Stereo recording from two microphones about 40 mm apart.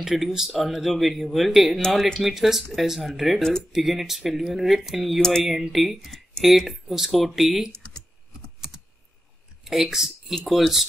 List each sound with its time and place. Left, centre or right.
0.0 s speech: centre
0.5 s speech: centre
7.4 s speech: centre
9.7 s speech: centre